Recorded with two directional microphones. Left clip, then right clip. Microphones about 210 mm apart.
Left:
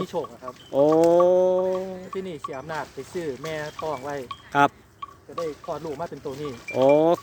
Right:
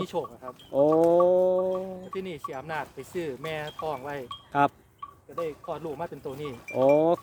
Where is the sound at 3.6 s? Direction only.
30° right (ahead or behind).